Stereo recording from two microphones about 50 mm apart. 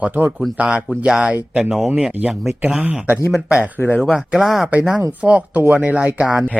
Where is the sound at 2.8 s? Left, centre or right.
Right.